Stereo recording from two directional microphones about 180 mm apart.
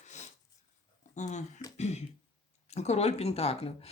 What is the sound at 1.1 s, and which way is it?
Speech, 40° left (ahead or behind).